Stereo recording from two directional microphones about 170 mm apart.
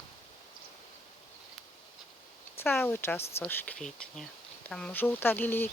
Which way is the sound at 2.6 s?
10° left (ahead or behind).